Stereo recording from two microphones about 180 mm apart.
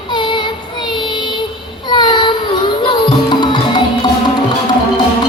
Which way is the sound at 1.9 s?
25° left (ahead or behind).